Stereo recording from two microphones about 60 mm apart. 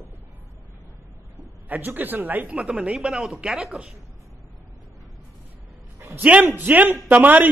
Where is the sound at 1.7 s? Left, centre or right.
Right.